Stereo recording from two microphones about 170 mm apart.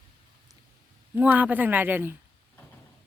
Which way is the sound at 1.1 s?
10° right (ahead or behind).